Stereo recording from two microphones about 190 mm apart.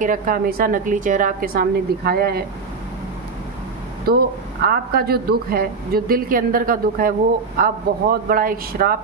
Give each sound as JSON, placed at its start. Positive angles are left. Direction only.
{"t": 0.0, "sound": "a woman's voice", "side_deg": -45}
{"t": 4.0, "sound": "a woman's voice", "side_deg": -55}